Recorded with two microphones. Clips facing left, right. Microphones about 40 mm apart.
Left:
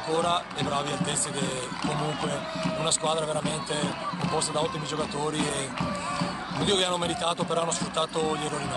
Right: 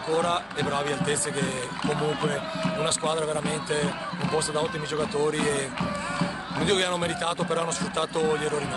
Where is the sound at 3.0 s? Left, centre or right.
Centre.